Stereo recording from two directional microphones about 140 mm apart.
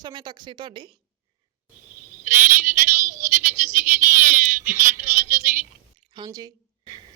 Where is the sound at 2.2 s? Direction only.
70° right (ahead or behind).